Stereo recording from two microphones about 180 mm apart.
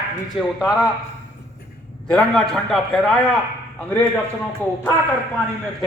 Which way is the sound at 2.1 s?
5° left (ahead or behind).